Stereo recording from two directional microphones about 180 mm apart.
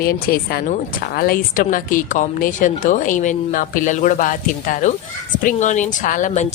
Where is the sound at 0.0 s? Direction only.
55° left (ahead or behind).